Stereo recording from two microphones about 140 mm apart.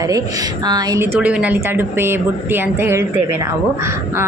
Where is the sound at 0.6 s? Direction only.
30° right (ahead or behind).